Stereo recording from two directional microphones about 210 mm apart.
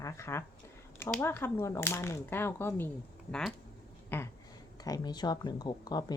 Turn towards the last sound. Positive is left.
turn(degrees=20)  # may be behind; listen again after turning